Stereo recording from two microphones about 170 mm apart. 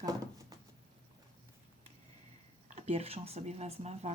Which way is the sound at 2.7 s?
40° right (ahead or behind).